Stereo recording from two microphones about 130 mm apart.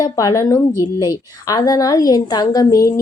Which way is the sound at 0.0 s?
30° left (ahead or behind).